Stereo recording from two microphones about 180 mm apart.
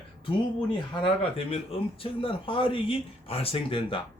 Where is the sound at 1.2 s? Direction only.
30° left (ahead or behind).